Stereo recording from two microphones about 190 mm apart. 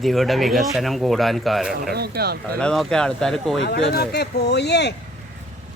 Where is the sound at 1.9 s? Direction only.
55° right (ahead or behind).